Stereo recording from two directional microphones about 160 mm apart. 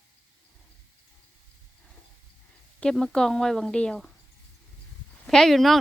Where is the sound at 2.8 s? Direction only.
5° left (ahead or behind).